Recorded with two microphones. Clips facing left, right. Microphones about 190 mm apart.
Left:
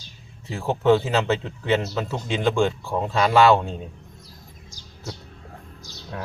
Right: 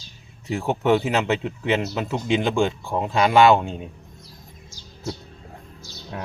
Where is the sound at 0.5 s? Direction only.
15° right (ahead or behind).